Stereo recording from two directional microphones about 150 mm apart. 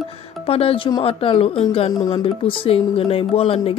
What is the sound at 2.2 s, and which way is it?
Speech, 35° left (ahead or behind).